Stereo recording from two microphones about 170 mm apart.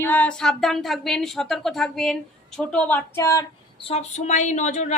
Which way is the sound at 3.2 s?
20° left (ahead or behind).